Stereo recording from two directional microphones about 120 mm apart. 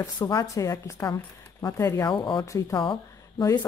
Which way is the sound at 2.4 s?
25° left (ahead or behind).